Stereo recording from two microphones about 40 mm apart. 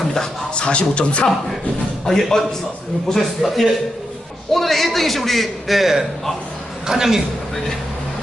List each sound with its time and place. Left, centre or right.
0.1 s speech: centre
2.0 s a man's voice: centre
3.1 s a man's voice: centre